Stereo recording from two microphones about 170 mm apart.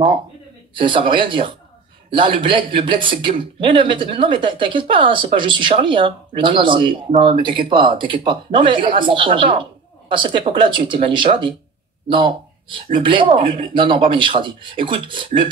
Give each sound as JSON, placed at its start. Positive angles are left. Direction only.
{"t": 0.7, "sound": "speech", "side_deg": -30}